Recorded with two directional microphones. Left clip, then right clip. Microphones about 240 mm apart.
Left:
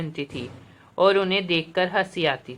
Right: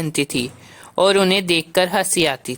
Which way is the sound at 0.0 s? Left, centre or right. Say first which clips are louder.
Right 10 dB; right.